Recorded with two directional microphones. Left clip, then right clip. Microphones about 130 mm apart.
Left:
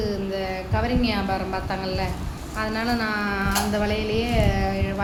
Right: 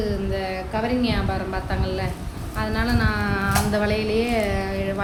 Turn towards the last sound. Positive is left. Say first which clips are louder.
# even
turn(degrees=-5)  # may be behind; listen again after turning